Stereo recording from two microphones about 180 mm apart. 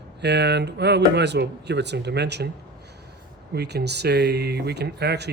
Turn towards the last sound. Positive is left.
turn(degrees=-65)  # may be behind; listen again after turning